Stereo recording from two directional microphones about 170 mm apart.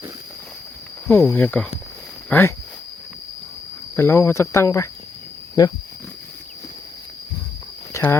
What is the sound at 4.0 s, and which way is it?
Speech, 15° left (ahead or behind).